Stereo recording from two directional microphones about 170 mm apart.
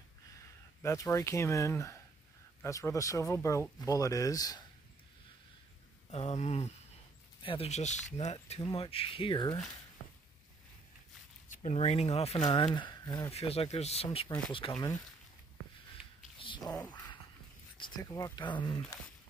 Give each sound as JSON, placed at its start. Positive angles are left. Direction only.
{"t": 0.8, "sound": "speech", "side_deg": 20}
{"t": 6.0, "sound": "speech", "side_deg": 40}
{"t": 11.5, "sound": "speech", "side_deg": 45}
{"t": 12.4, "sound": "speech", "side_deg": 30}
{"t": 13.3, "sound": "speech", "side_deg": 35}
{"t": 16.3, "sound": "a sound", "side_deg": 25}
{"t": 17.7, "sound": "speech", "side_deg": 25}